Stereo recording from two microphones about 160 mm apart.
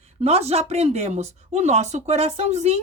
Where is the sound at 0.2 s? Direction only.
40° right (ahead or behind).